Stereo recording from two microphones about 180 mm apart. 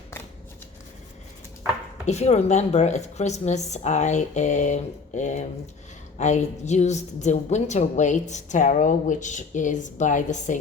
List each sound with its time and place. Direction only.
2.0 s a woman's voice: 35° left (ahead or behind)